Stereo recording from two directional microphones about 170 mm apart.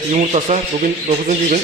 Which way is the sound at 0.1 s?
40° right (ahead or behind).